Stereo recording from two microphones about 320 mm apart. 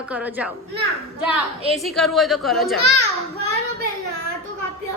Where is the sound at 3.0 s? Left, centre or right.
Right.